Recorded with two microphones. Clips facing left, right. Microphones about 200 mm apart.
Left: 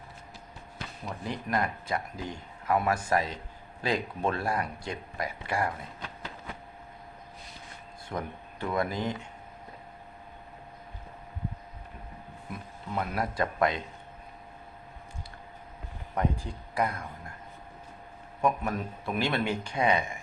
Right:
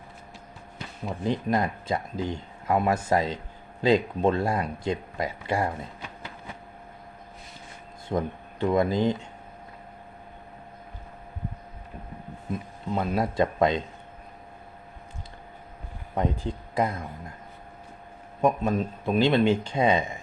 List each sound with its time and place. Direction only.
1.0 s speech: 25° right (ahead or behind)
8.1 s speech: 25° right (ahead or behind)
12.5 s speech: 25° right (ahead or behind)
16.1 s speech: 25° right (ahead or behind)
18.4 s speech: 20° right (ahead or behind)